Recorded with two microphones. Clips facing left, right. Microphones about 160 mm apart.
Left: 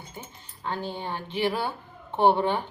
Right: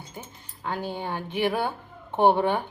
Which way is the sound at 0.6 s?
15° right (ahead or behind).